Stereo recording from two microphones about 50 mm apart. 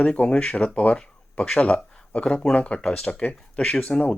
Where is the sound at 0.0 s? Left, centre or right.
Left.